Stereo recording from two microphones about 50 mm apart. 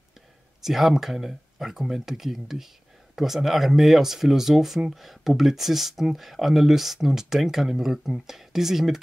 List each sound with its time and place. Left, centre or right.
0.7 s speech: centre